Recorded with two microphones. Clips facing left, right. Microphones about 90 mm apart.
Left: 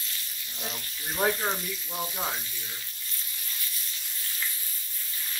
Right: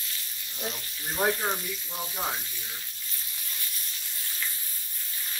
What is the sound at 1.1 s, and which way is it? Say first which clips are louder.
Speech: even; 5° right (ahead or behind).